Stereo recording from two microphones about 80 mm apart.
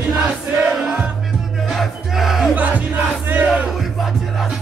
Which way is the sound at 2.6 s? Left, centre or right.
Right.